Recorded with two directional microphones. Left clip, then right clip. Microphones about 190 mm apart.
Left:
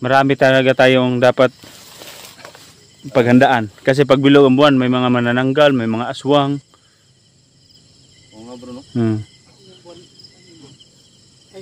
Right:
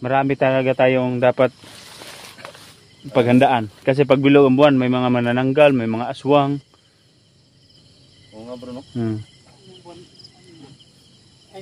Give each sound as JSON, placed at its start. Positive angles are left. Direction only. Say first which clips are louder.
{"t": 0.0, "sound": "speech", "louder": "left 5 dB", "side_deg": 45}
{"t": 1.8, "sound": "a sound", "louder": "left 1 dB", "side_deg": 20}
{"t": 3.1, "sound": "a man's voice", "louder": "left 3 dB", "side_deg": 35}
{"t": 8.9, "sound": "speech", "louder": "left 7 dB", "side_deg": 55}